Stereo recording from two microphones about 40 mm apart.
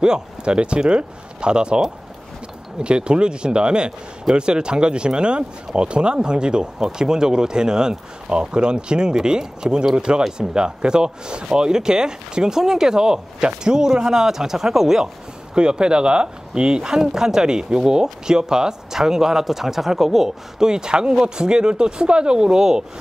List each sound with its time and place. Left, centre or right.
0.0 s speech: right
2.8 s speech: right
15.5 s speech: right